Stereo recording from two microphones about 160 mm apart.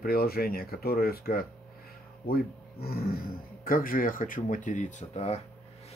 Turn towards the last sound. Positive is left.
turn(degrees=40)  # may be behind; listen again after turning